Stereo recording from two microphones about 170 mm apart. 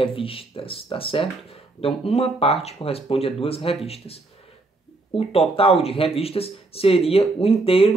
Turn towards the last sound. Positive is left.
turn(degrees=35)  # may be behind; listen again after turning